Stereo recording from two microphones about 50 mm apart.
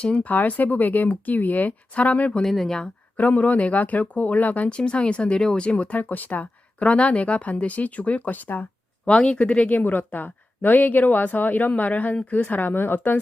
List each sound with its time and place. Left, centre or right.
0.0 s speech: left
0.3 s a woman's voice: left
2.4 s speech: centre
3.2 s a woman's voice: left
4.8 s speech: left
9.0 s a woman's voice: centre; by 13.1 s left